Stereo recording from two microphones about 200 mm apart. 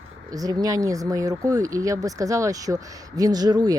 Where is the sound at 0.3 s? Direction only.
20° right (ahead or behind).